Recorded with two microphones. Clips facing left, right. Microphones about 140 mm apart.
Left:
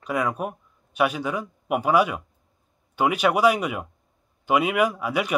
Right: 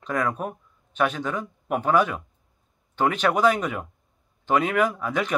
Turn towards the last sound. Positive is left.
turn(degrees=10)  # may be behind; listen again after turning